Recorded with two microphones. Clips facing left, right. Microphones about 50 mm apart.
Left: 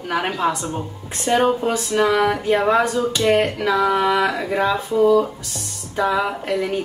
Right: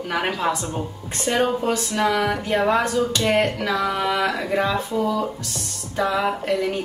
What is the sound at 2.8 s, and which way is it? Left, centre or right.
Speech, left.